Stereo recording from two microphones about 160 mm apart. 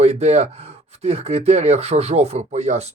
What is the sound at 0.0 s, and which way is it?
Speech, 40° right (ahead or behind).